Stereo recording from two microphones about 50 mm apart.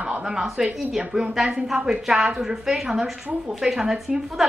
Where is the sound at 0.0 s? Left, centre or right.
Centre.